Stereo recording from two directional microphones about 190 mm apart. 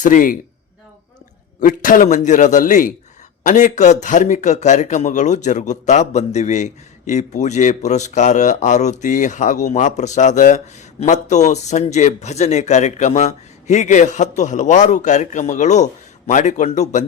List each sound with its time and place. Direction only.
0.0 s speech: 45° left (ahead or behind)
1.6 s a man's voice: 45° left (ahead or behind)